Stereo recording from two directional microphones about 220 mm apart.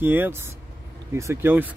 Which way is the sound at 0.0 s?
10° right (ahead or behind).